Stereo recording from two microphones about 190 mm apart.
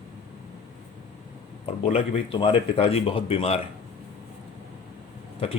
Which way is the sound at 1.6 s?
30° left (ahead or behind).